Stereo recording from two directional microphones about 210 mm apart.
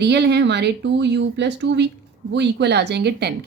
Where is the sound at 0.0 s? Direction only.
55° right (ahead or behind).